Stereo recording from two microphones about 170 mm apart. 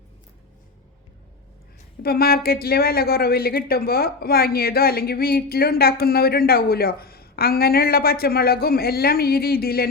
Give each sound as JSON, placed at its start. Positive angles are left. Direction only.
{"t": 2.0, "sound": "a woman's voice", "side_deg": 65}